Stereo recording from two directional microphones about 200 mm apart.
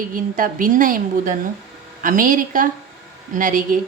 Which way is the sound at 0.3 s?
45° right (ahead or behind).